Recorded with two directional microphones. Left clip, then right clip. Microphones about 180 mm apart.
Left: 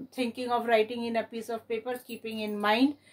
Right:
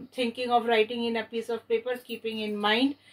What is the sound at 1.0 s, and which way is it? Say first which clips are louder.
Speech: right 1 dB; 70° left (ahead or behind).